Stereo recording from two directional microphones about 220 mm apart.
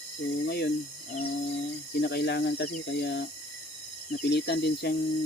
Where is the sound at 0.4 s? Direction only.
45° left (ahead or behind).